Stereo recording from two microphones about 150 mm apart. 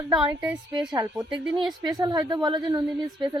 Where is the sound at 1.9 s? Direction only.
25° right (ahead or behind).